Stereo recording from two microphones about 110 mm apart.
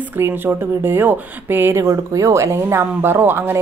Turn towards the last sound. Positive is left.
turn(degrees=-20)  # may be behind; listen again after turning